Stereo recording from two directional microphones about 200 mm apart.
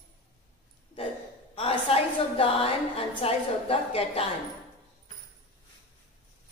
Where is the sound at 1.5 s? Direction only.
30° left (ahead or behind).